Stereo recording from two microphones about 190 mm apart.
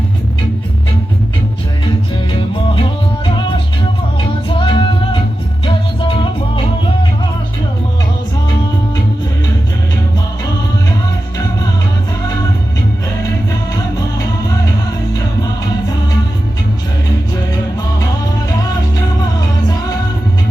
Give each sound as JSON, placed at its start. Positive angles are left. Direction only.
{"t": 4.4, "sound": "music", "side_deg": 25}